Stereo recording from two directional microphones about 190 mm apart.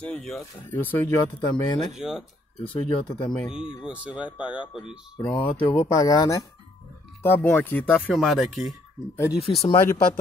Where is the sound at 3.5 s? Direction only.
5° right (ahead or behind).